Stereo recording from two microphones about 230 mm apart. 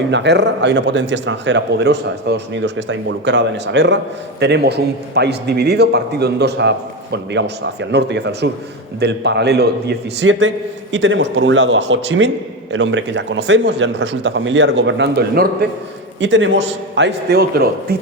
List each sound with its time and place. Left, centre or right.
0.1 s a man's voice: right